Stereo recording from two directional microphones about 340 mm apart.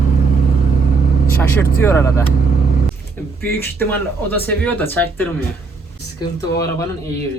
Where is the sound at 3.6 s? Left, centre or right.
Centre.